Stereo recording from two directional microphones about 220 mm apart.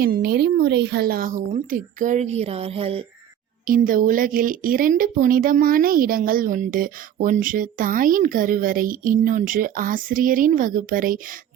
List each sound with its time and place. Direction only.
0.0 s speech: 45° right (ahead or behind); by 3.1 s 25° right (ahead or behind)
3.7 s speech: 40° right (ahead or behind)